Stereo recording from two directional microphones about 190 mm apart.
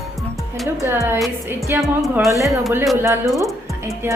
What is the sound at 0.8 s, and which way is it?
A woman's voice, 15° right (ahead or behind).